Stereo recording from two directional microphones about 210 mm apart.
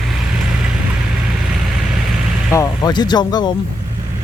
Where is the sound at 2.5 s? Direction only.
15° left (ahead or behind).